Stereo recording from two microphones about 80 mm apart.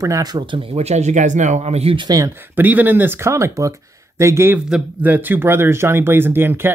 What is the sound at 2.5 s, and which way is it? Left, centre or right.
Speech, right.